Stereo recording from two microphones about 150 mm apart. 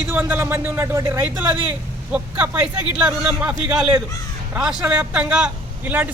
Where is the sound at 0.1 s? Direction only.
15° right (ahead or behind).